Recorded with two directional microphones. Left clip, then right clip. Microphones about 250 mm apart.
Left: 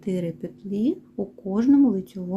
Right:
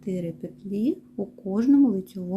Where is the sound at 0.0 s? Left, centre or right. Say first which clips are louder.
Left 3 dB; centre.